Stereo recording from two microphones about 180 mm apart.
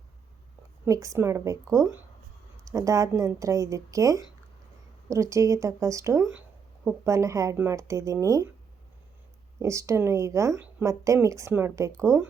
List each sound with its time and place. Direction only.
0.9 s speech: 20° right (ahead or behind)
9.6 s speech: 15° right (ahead or behind)